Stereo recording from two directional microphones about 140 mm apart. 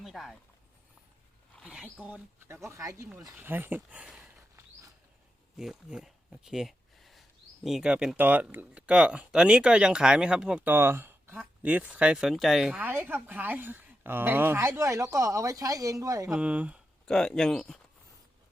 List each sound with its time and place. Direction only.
0.0 s a sound: centre (ahead or behind)
1.6 s speech: 10° right (ahead or behind)
4.4 s a sound: 20° right (ahead or behind)
5.5 s speech: 5° right (ahead or behind); by 16.3 s 25° right (ahead or behind)
16.3 s speech: 10° right (ahead or behind)
17.1 s speech: 5° left (ahead or behind)